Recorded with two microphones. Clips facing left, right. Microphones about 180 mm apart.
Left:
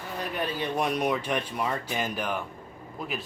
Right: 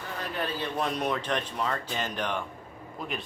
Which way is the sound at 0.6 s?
15° left (ahead or behind).